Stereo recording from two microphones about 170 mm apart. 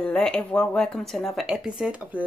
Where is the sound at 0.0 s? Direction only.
5° left (ahead or behind).